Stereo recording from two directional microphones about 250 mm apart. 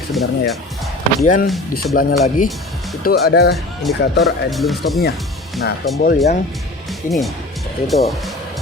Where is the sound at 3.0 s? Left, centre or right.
Left.